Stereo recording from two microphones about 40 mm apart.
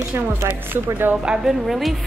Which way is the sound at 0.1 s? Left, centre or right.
Right.